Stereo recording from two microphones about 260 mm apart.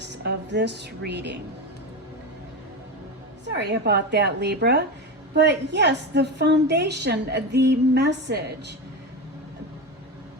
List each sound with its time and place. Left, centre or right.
0.0 s a woman's voice: right
3.6 s a woman's voice: right